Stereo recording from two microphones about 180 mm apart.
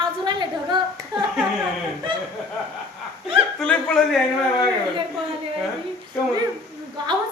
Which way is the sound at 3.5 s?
5° left (ahead or behind).